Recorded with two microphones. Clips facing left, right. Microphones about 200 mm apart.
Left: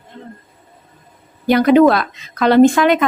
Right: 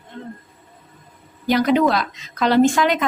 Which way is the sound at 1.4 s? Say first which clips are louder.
Left 6 dB; 55° left (ahead or behind).